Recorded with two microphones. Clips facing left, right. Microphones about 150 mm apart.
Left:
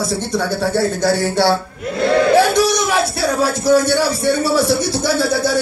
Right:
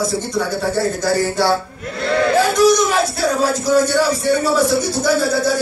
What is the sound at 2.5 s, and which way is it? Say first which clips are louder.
A man's voice: right 2 dB; 65° left (ahead or behind).